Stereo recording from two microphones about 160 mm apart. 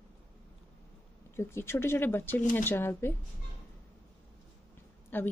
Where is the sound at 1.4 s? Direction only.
15° left (ahead or behind).